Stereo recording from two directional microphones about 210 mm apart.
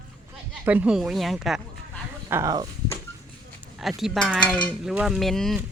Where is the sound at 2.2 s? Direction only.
15° right (ahead or behind).